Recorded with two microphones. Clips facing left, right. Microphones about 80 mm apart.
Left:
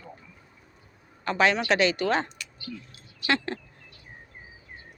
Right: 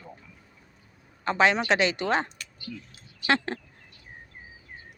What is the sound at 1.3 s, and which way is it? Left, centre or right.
Speech, right.